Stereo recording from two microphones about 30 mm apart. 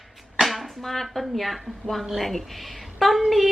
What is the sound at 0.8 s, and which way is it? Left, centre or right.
Speech, centre.